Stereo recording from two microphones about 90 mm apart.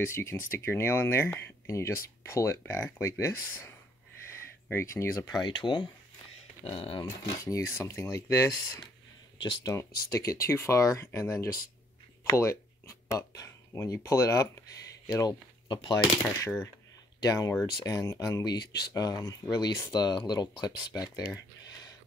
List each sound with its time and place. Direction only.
0.0 s speech: 30° left (ahead or behind)
4.3 s a sound: 30° left (ahead or behind)
5.3 s speech: 55° left (ahead or behind)
6.6 s speech: 90° left
7.0 s speech: 40° left (ahead or behind)
15.0 s speech: 45° left (ahead or behind)
16.3 s speech: 35° left (ahead or behind)
17.2 s speech: 45° left (ahead or behind)